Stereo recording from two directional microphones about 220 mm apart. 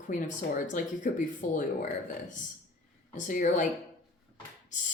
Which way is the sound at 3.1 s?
35° left (ahead or behind).